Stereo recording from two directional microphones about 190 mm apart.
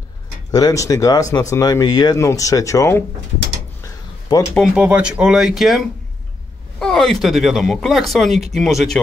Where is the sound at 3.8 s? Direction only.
20° left (ahead or behind).